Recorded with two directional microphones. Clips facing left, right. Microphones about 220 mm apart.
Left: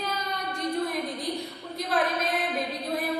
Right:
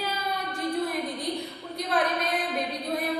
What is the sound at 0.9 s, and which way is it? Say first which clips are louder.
A woman's voice: even; centre (ahead or behind).